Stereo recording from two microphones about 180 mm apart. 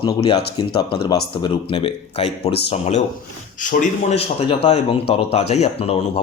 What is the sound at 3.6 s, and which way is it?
Speech, 45° left (ahead or behind).